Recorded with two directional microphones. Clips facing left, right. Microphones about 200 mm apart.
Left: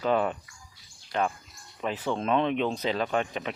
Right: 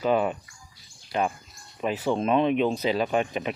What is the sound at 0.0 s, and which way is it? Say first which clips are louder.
Speech: right 2 dB; 10° right (ahead or behind).